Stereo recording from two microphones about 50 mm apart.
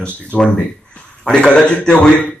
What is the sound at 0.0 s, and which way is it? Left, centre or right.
A man's voice, left.